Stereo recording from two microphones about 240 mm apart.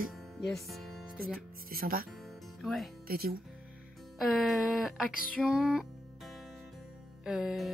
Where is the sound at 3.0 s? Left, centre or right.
Right.